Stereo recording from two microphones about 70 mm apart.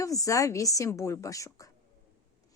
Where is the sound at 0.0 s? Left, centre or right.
Left.